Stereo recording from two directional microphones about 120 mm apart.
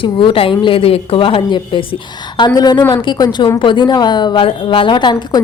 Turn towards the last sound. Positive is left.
turn(degrees=40)  # may be behind; listen again after turning